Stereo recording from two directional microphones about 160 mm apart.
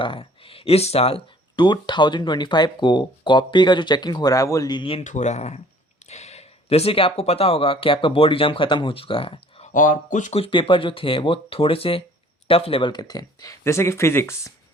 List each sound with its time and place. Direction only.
0.0 s speech: 35° left (ahead or behind)
5.0 s speech: 45° left (ahead or behind)
9.7 s speech: 55° left (ahead or behind)
10.4 s speech: 30° left (ahead or behind); by 14.5 s 15° left (ahead or behind)